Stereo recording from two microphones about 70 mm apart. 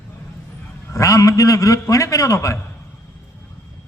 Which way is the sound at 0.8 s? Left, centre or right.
Left.